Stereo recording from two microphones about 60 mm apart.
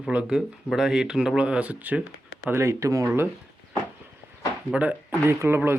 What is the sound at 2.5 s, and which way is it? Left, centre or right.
Speech, right.